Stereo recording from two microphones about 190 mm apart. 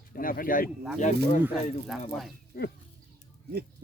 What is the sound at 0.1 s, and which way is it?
Speech, 50° left (ahead or behind).